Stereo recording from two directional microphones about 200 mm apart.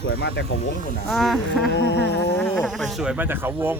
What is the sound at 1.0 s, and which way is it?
Speech, centre (ahead or behind).